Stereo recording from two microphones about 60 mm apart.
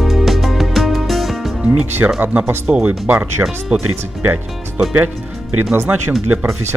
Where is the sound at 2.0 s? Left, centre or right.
Right.